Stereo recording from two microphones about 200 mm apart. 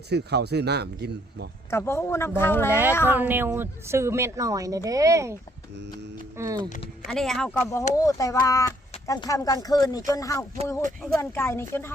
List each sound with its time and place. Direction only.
0.1 s speech: 55° right (ahead or behind)
1.7 s speech: 10° left (ahead or behind)
3.2 s speech: 10° right (ahead or behind)
6.7 s speech: 40° left (ahead or behind)
7.1 s speech: centre (ahead or behind)